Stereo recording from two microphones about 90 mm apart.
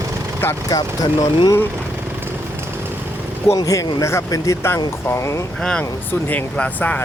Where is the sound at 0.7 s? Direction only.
50° left (ahead or behind).